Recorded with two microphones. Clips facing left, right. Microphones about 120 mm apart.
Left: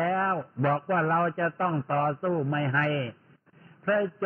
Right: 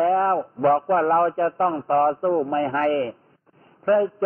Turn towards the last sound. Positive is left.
turn(degrees=-30)  # may be behind; listen again after turning